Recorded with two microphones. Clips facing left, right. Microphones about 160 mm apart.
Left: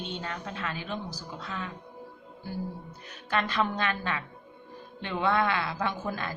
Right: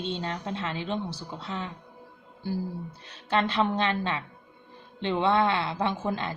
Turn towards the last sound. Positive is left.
turn(degrees=-25)  # may be behind; listen again after turning